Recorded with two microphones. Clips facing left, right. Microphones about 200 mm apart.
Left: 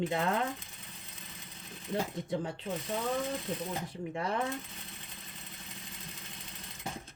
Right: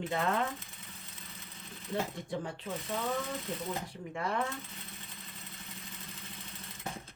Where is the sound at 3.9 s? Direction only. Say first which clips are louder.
Left 1 dB; 20° left (ahead or behind).